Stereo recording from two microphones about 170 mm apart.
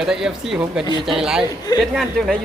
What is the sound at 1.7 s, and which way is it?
Speech, 25° left (ahead or behind).